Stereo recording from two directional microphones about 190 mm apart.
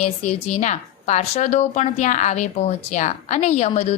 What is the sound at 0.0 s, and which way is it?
A woman's voice, 35° left (ahead or behind).